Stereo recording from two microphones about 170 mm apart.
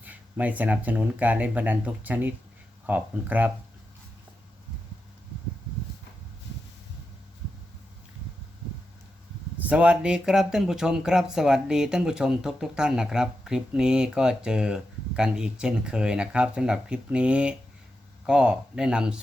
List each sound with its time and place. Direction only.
0.0 s speech: 10° right (ahead or behind)
9.6 s speech: 5° right (ahead or behind)